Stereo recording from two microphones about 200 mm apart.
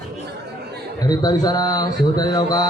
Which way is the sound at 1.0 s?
20° left (ahead or behind).